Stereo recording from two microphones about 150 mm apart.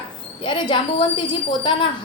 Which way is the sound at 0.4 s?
30° left (ahead or behind).